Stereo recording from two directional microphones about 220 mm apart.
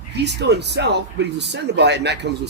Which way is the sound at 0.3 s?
50° right (ahead or behind).